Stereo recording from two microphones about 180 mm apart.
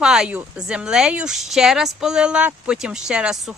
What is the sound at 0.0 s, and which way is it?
Speech, 5° right (ahead or behind).